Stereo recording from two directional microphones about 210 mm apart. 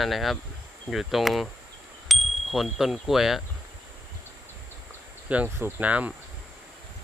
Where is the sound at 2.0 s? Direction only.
Centre (ahead or behind).